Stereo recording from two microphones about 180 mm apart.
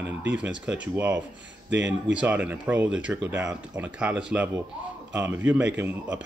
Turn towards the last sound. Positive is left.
turn(degrees=-10)  # may be behind; listen again after turning